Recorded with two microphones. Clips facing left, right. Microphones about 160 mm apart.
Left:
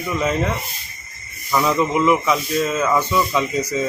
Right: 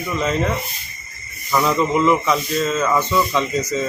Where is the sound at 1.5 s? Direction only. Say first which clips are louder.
Even; centre (ahead or behind).